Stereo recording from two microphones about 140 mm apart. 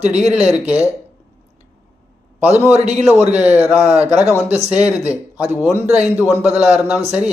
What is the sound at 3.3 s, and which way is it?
Speech, 10° right (ahead or behind).